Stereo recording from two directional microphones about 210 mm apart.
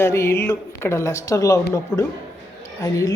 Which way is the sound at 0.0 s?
10° left (ahead or behind).